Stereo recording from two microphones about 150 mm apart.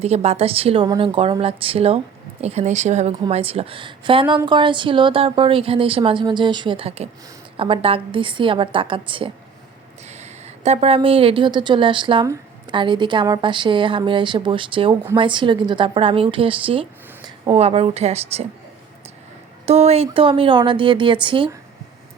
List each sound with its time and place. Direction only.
0.0 s a woman's voice: 45° right (ahead or behind)
10.1 s a woman's voice: 50° right (ahead or behind)
17.2 s a sound: 30° right (ahead or behind)
17.6 s speech: 45° right (ahead or behind)
19.6 s a woman's voice: 45° right (ahead or behind)